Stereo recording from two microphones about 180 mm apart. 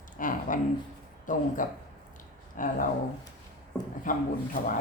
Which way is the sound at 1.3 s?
45° left (ahead or behind).